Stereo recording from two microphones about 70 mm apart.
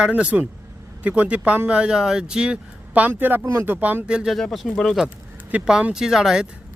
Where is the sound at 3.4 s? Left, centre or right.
Right.